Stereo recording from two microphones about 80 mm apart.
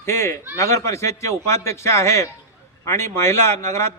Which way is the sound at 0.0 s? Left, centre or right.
Left.